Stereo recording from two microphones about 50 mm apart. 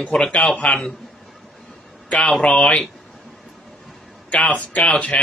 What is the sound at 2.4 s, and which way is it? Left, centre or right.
Speech, centre.